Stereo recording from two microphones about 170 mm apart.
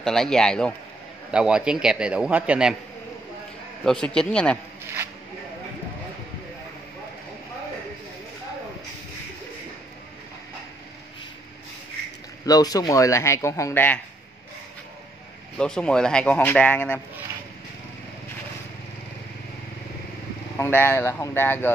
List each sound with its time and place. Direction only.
0.0 s speech: 5° left (ahead or behind)
3.8 s speech: 5° left (ahead or behind)
12.4 s speech: 20° left (ahead or behind)
15.5 s speech: 5° left (ahead or behind)
20.5 s speech: 15° left (ahead or behind)